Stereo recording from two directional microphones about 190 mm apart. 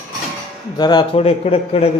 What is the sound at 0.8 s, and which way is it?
A man's voice, 20° left (ahead or behind).